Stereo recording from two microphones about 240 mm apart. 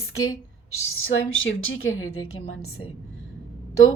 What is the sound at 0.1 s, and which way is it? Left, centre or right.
Speech, left.